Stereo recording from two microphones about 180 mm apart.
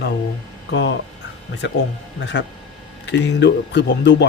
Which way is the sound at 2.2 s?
90° left.